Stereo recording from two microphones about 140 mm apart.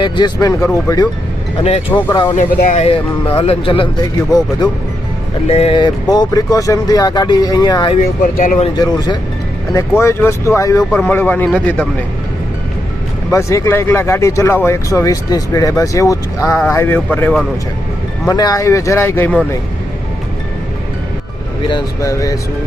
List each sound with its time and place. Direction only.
0.0 s a man's voice: 25° left (ahead or behind)
2.3 s speech: 65° left (ahead or behind)
3.3 s speech: 40° left (ahead or behind)
4.3 s speech: 25° left (ahead or behind)
5.5 s speech: 45° left (ahead or behind)
5.8 s speech: 30° left (ahead or behind)
8.0 s speech: 75° left (ahead or behind)
8.7 s speech: 30° left (ahead or behind)
9.7 s a man's voice: 20° left (ahead or behind)
13.3 s a man's voice: 20° left (ahead or behind)
18.3 s speech: 25° left (ahead or behind)
21.7 s speech: 30° left (ahead or behind)